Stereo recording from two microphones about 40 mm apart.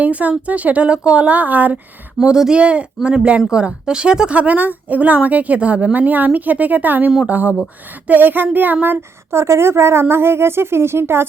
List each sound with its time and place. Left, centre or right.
0.0 s speech: right
2.2 s speech: centre
2.6 s speech: right
4.3 s speech: right